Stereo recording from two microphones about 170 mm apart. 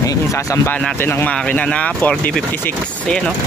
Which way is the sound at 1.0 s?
10° left (ahead or behind).